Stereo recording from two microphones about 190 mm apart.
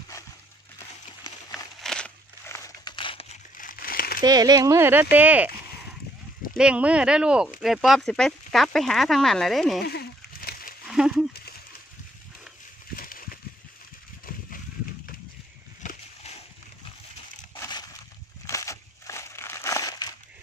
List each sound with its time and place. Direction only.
1.5 s crumpling: centre (ahead or behind); by 3.3 s 25° left (ahead or behind)
3.5 s crumpling: 50° left (ahead or behind)
4.2 s speech: 20° right (ahead or behind)
6.5 s speech: 5° right (ahead or behind)
9.8 s a sound: 55° left (ahead or behind)
10.9 s speech: 5° right (ahead or behind)
12.9 s a sound: 50° left (ahead or behind)
15.8 s splash: 35° left (ahead or behind)
17.6 s crushing: 20° left (ahead or behind)
18.5 s a sound: 15° left (ahead or behind)